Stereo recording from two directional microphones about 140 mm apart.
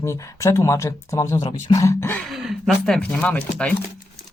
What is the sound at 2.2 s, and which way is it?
Speech, centre (ahead or behind).